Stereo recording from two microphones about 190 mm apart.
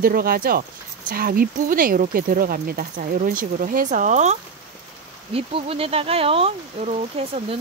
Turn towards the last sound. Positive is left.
turn(degrees=-30)  # may be behind; listen again after turning